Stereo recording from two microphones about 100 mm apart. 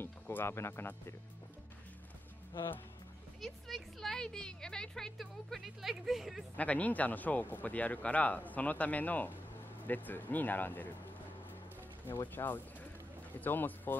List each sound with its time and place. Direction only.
0.0 s speech: 20° left (ahead or behind)
3.3 s a woman's voice: centre (ahead or behind)
6.5 s speech: 15° left (ahead or behind)
12.4 s speech: 35° left (ahead or behind)
13.4 s speech: 20° left (ahead or behind)